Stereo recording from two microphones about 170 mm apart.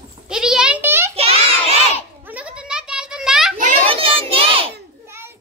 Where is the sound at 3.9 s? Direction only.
30° right (ahead or behind).